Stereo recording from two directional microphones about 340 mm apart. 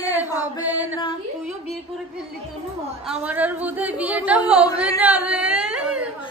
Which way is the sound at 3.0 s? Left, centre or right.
Centre.